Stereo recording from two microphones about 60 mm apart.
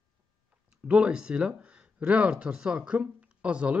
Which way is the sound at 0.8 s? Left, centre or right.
Centre.